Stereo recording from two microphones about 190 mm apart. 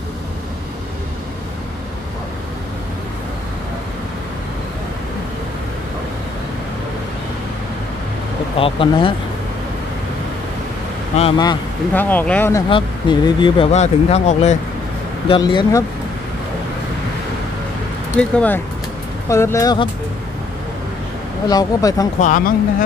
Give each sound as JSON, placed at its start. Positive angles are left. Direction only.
{"t": 8.5, "sound": "speech", "side_deg": 30}
{"t": 11.1, "sound": "speech", "side_deg": 25}
{"t": 11.9, "sound": "speech", "side_deg": 10}
{"t": 12.6, "sound": "speech", "side_deg": 25}
{"t": 13.7, "sound": "speech", "side_deg": 35}
{"t": 15.2, "sound": "speech", "side_deg": 25}
{"t": 18.3, "sound": "speech", "side_deg": 10}
{"t": 21.5, "sound": "speech", "side_deg": 20}
{"t": 22.2, "sound": "speech", "side_deg": 45}